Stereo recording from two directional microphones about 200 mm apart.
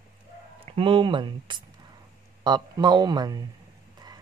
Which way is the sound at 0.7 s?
25° right (ahead or behind).